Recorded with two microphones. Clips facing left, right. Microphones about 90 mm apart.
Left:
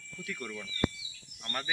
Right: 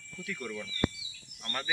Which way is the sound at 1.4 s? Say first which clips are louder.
Even; 15° left (ahead or behind).